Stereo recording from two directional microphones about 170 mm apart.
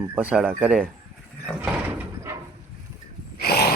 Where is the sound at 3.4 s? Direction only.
70° left (ahead or behind).